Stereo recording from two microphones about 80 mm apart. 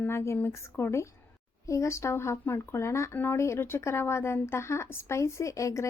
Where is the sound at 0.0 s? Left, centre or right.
Left.